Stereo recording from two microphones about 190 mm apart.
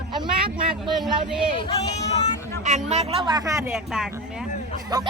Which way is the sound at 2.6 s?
35° right (ahead or behind).